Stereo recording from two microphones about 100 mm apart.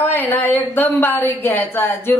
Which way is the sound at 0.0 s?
20° left (ahead or behind).